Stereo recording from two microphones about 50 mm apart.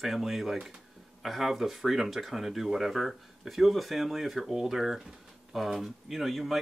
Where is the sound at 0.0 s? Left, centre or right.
Centre.